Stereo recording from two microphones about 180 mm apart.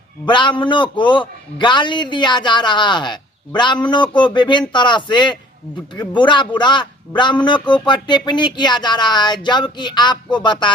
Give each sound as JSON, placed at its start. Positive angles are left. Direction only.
{"t": 0.3, "sound": "a man's voice", "side_deg": 25}